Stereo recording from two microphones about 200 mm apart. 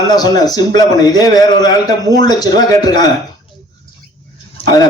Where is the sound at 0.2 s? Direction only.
20° left (ahead or behind).